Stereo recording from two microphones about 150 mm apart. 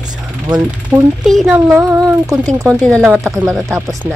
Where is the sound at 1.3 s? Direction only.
Centre (ahead or behind).